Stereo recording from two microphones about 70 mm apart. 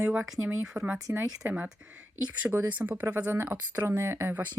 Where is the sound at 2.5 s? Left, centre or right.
Centre.